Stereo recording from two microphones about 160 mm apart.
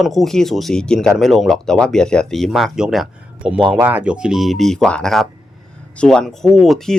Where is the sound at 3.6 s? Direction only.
30° right (ahead or behind).